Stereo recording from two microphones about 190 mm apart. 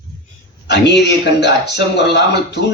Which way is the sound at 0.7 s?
65° left (ahead or behind).